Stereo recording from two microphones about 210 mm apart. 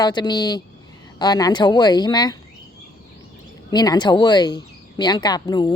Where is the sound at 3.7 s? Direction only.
20° left (ahead or behind).